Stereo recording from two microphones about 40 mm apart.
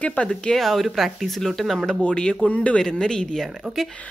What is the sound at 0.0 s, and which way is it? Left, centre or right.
Speech, left.